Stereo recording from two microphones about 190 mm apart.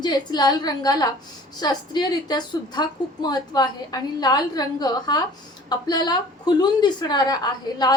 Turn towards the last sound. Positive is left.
turn(degrees=20)  # may be behind; listen again after turning